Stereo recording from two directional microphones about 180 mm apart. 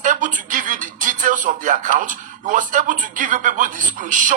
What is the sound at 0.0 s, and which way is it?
A woman's voice, 45° right (ahead or behind).